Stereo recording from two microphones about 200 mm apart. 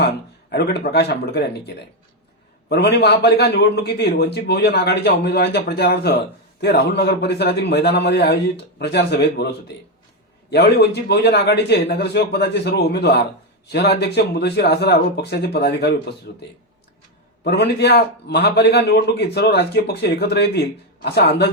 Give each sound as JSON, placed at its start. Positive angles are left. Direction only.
{"t": 0.5, "sound": "a man's voice", "side_deg": 55}
{"t": 10.5, "sound": "a man's voice", "side_deg": 55}